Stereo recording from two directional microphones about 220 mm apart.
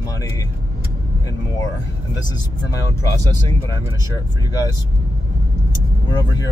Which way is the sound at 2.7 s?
15° left (ahead or behind).